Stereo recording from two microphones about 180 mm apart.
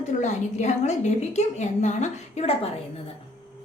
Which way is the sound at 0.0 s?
40° left (ahead or behind).